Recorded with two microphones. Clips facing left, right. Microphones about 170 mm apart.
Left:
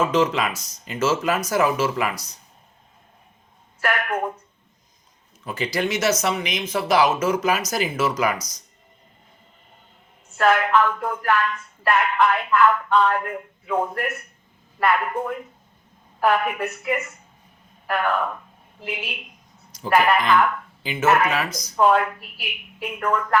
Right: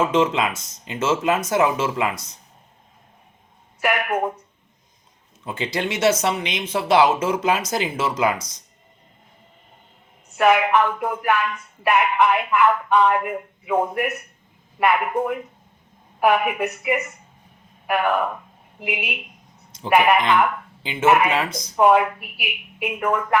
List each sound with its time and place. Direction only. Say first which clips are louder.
0.0 s speech: right 1 dB; 25° right (ahead or behind)
3.8 s speech: right 2 dB; 15° right (ahead or behind)
5.5 s speech: left 1 dB; 25° right (ahead or behind)
10.3 s speech: right 2 dB; 15° right (ahead or behind)